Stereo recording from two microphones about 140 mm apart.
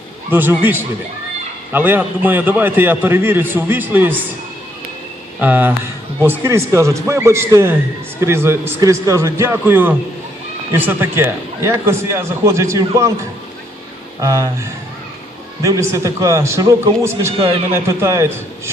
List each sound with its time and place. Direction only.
0.3 s a man's voice: 15° right (ahead or behind)
5.4 s a man's voice: 10° right (ahead or behind)
14.2 s a man's voice: 25° right (ahead or behind)